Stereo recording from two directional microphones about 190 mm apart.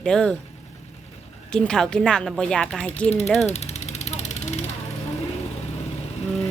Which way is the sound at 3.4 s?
35° left (ahead or behind).